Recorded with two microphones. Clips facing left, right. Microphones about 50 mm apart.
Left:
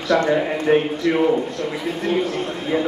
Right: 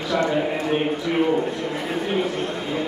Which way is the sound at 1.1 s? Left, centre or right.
Centre.